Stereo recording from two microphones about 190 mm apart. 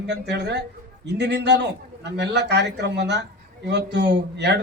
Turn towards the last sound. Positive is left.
turn(degrees=-60)  # may be behind; listen again after turning